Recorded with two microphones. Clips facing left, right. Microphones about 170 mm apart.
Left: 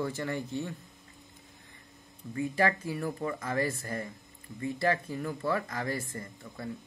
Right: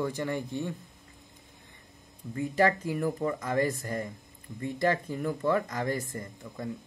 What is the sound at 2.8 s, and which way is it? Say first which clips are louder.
Speech: right 4 dB; 15° right (ahead or behind).